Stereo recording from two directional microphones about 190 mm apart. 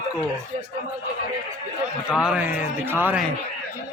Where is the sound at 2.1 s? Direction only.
5° right (ahead or behind).